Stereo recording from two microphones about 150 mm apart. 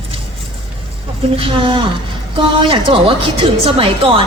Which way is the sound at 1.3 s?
35° right (ahead or behind).